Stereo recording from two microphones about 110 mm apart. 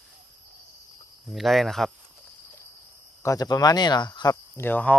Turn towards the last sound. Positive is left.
turn(degrees=15)  # may be behind; listen again after turning